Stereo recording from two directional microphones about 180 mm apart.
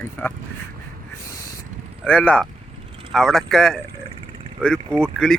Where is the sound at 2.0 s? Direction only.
5° left (ahead or behind).